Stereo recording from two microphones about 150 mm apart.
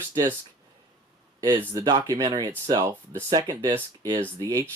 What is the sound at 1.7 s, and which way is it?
Speech, 30° right (ahead or behind).